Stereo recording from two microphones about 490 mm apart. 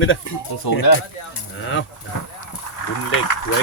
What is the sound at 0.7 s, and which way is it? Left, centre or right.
Speech, left.